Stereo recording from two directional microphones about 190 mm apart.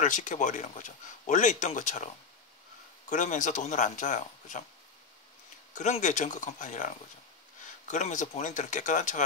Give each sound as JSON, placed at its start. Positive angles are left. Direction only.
{"t": 0.0, "sound": "speech", "side_deg": 40}
{"t": 3.1, "sound": "speech", "side_deg": 40}
{"t": 5.8, "sound": "speech", "side_deg": 40}